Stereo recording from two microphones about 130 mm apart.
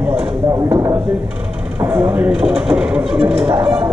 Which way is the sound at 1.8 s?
15° right (ahead or behind).